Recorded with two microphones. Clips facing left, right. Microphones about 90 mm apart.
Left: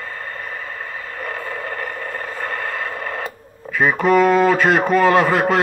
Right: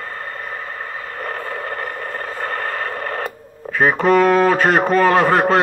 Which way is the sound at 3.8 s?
45° right (ahead or behind).